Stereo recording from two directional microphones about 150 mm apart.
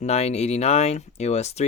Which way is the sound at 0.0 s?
45° left (ahead or behind).